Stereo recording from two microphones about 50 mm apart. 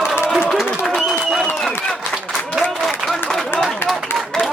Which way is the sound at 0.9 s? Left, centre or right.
Centre.